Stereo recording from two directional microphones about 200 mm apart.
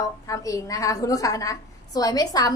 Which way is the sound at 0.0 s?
15° left (ahead or behind).